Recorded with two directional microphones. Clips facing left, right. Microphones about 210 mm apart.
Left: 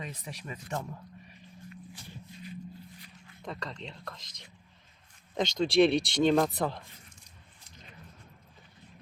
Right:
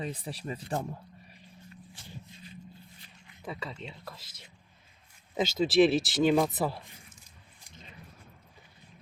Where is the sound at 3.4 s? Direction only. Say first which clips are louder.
Even; 5° right (ahead or behind).